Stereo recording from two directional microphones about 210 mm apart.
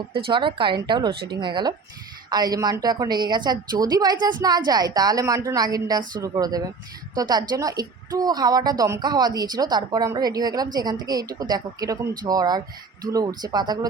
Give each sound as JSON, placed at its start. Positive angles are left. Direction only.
{"t": 0.3, "sound": "a woman's voice", "side_deg": -25}